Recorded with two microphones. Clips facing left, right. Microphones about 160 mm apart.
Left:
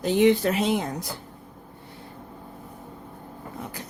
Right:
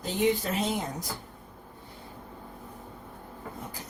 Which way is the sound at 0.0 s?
75° left (ahead or behind).